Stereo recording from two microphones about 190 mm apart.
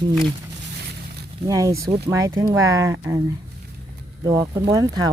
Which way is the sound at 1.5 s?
20° right (ahead or behind).